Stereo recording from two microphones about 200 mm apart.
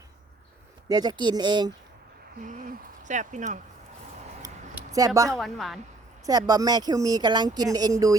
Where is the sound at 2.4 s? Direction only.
40° right (ahead or behind).